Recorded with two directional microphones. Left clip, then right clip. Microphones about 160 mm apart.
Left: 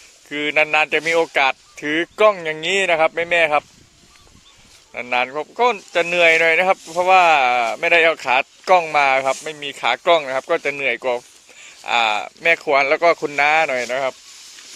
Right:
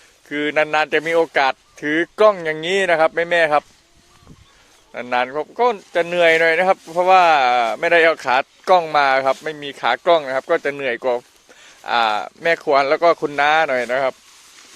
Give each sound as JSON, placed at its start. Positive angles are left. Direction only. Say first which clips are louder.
{"t": 0.3, "sound": "speech", "louder": "left 1 dB", "side_deg": -30}
{"t": 4.9, "sound": "speech", "louder": "even", "side_deg": -25}